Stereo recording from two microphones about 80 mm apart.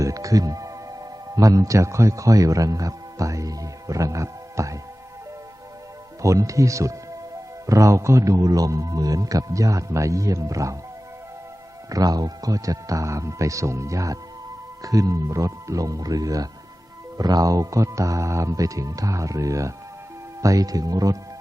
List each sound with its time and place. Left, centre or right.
0.0 s music: right
1.4 s speech: right
6.2 s speech: right
11.9 s speech: right